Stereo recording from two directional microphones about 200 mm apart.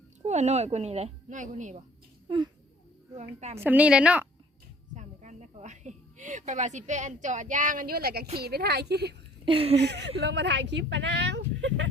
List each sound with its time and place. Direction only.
0.3 s a woman's voice: 35° right (ahead or behind)
3.6 s a woman's voice: 10° right (ahead or behind)
4.9 s speech: 35° right (ahead or behind); by 9.1 s 55° right (ahead or behind)
9.5 s speech: 30° right (ahead or behind)
9.7 s speech: 60° right (ahead or behind)